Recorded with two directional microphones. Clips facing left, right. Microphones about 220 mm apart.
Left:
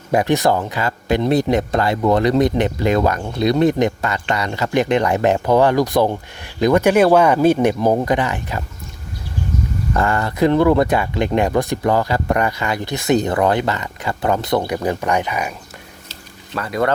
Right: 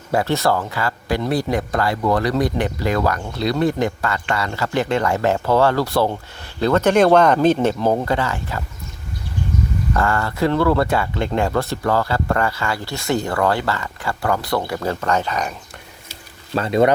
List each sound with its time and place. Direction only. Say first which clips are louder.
0.1 s speech: left 3 dB; 15° left (ahead or behind)
9.9 s speech: left 2 dB; 20° left (ahead or behind)
16.6 s speech: right 4 dB; 25° right (ahead or behind)